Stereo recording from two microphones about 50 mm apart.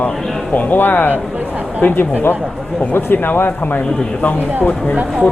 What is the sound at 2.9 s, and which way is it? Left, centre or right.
Speech, left.